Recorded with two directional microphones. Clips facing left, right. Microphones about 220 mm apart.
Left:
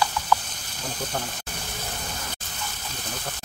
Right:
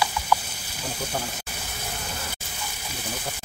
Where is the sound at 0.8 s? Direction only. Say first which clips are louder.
Even; 10° right (ahead or behind).